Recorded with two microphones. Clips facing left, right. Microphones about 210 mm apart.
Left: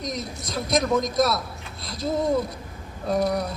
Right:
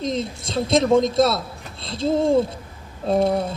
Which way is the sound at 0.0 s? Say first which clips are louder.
Right 6 dB; 25° right (ahead or behind).